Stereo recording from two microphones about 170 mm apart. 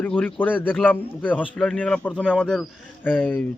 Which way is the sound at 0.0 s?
10° left (ahead or behind).